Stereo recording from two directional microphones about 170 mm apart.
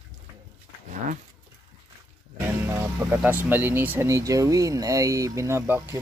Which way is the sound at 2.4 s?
15° right (ahead or behind).